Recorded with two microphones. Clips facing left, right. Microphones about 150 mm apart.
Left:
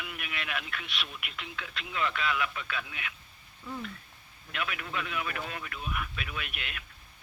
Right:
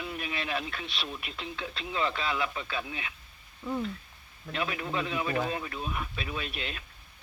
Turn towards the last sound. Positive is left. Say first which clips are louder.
# right 4 dB
turn(degrees=-30)  # may be behind; listen again after turning